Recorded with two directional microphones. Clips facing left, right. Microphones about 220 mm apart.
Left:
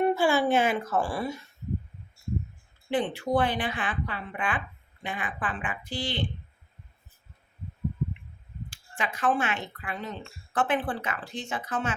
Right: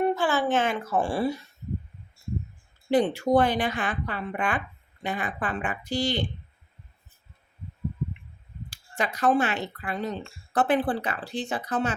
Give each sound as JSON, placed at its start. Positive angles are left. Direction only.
{"t": 0.0, "sound": "speech", "side_deg": 10}
{"t": 0.8, "sound": "speech", "side_deg": -10}
{"t": 1.0, "sound": "speech", "side_deg": -30}
{"t": 2.9, "sound": "speech", "side_deg": -40}
{"t": 8.7, "sound": "speech", "side_deg": -40}